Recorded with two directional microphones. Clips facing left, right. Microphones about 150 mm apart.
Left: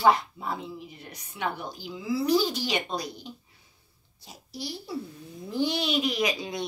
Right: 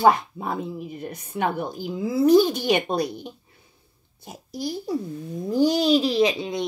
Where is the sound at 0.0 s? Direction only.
50° right (ahead or behind).